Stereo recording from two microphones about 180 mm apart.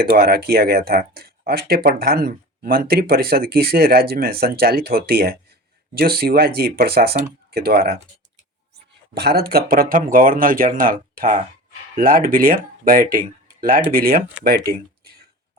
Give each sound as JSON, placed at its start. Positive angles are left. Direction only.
{"t": 0.0, "sound": "speech", "side_deg": -60}
{"t": 9.1, "sound": "speech", "side_deg": -60}